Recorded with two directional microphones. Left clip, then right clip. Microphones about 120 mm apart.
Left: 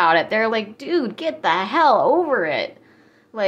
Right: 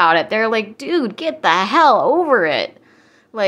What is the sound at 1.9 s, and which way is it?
Speech, 20° right (ahead or behind).